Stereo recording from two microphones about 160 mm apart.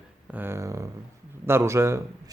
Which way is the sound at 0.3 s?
15° right (ahead or behind).